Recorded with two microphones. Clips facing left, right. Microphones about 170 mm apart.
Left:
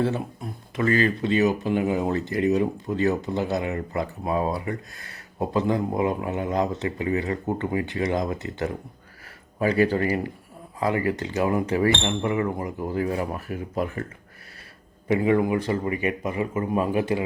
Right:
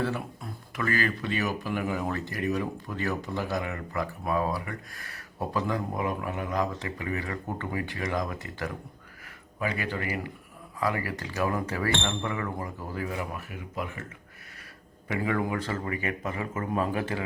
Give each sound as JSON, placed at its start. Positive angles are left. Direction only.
{"t": 0.0, "sound": "speech", "side_deg": 25}
{"t": 9.6, "sound": "speech", "side_deg": 35}
{"t": 15.0, "sound": "a man's voice", "side_deg": 25}